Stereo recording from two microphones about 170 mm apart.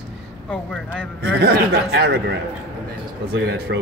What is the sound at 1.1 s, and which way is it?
A man's voice, 75° right (ahead or behind).